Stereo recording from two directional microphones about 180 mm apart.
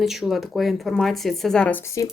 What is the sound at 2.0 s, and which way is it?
Speech, 20° left (ahead or behind).